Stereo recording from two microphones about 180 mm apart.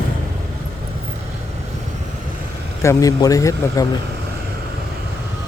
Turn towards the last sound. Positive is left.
turn(degrees=20)  # may be behind; listen again after turning